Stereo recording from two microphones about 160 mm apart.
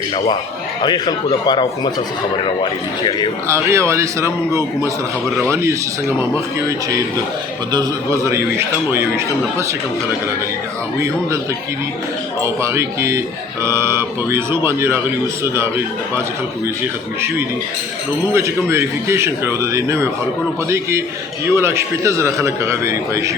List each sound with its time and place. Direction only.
0.8 s a man's voice: 25° left (ahead or behind)
3.4 s speech: 15° right (ahead or behind)
12.4 s speech: 15° right (ahead or behind)
18.3 s speech: 15° right (ahead or behind)